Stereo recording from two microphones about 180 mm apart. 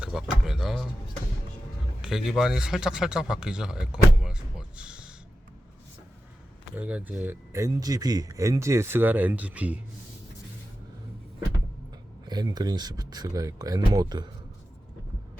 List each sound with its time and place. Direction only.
0.0 s speech: centre (ahead or behind)
2.0 s speech: 5° right (ahead or behind)
6.7 s speech: 5° right (ahead or behind)
12.3 s speech: 20° right (ahead or behind)